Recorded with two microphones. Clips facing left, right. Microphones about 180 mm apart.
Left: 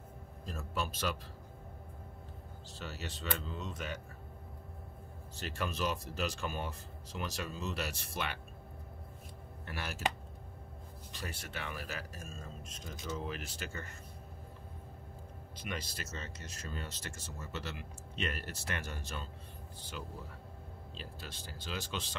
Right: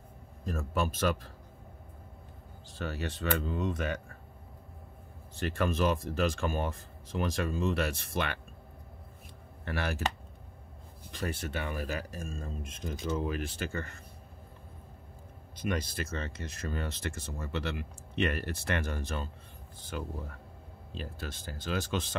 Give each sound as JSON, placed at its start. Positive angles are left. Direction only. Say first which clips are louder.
{"t": 0.5, "sound": "speech", "louder": "right 7 dB", "side_deg": -50}
{"t": 2.8, "sound": "speech", "louder": "right 8 dB", "side_deg": -55}
{"t": 5.3, "sound": "speech", "louder": "right 8 dB", "side_deg": -55}
{"t": 9.7, "sound": "speech", "louder": "right 9 dB", "side_deg": -60}
{"t": 11.1, "sound": "speech", "louder": "right 10 dB", "side_deg": -55}
{"t": 15.6, "sound": "speech", "louder": "right 9 dB", "side_deg": -55}